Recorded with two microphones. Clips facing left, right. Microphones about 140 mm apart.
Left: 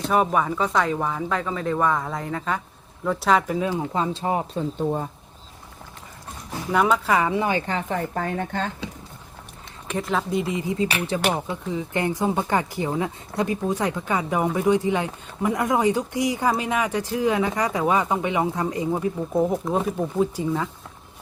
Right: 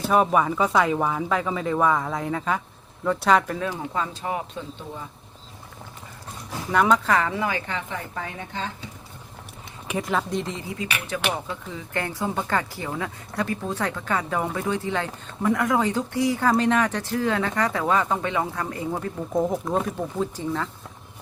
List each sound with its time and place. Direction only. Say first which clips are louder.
0.0 s speech: right 1 dB; centre (ahead or behind); by 3.8 s 15° left (ahead or behind)
3.9 s speech: left 4 dB; 25° left (ahead or behind)
6.7 s speech: even; 5° left (ahead or behind); by 7.6 s 25° left (ahead or behind)
7.7 s speech: left 6 dB; 45° left (ahead or behind)
9.8 s speech: left 1 dB; 5° right (ahead or behind); by 10.8 s 15° left (ahead or behind)
10.8 s speech: left 5 dB; 30° left (ahead or behind)
11.4 s speech: left 6 dB; 20° left (ahead or behind)